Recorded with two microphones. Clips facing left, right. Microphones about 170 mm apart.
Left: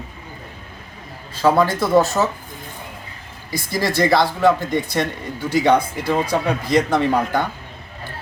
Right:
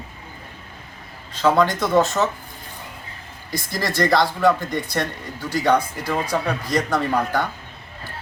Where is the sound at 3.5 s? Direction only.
10° left (ahead or behind).